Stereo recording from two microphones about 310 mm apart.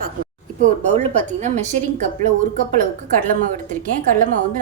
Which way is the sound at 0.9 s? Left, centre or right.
Right.